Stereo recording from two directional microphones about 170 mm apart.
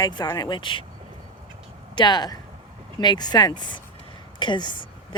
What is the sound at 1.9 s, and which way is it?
Speech, 25° left (ahead or behind).